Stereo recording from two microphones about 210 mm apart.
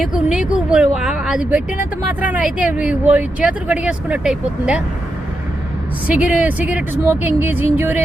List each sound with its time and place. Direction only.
0.1 s speech: 5° right (ahead or behind)
6.1 s speech: 5° right (ahead or behind)